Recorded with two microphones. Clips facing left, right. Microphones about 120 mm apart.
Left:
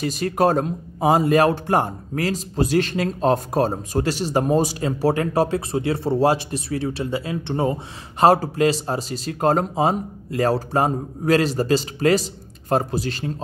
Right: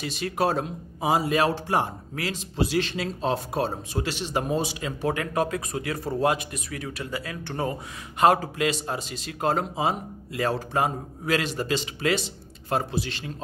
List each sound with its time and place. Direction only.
0.0 s speech: 45° left (ahead or behind); by 7.7 s 25° left (ahead or behind)
8.2 s speech: 35° left (ahead or behind)